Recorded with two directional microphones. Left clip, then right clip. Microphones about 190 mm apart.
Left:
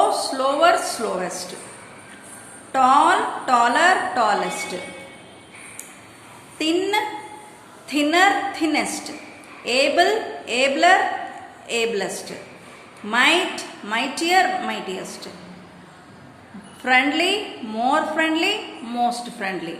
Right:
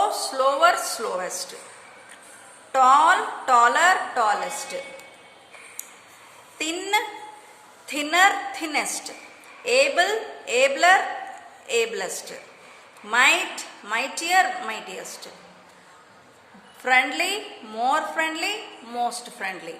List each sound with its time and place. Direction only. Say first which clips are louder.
0.0 s speech: left 2 dB; 35° right (ahead or behind)
2.7 s a woman's voice: left 1 dB; 35° right (ahead or behind)
6.6 s a woman's voice: left 4 dB; 35° right (ahead or behind)
16.8 s a woman's voice: left 3 dB; 30° right (ahead or behind)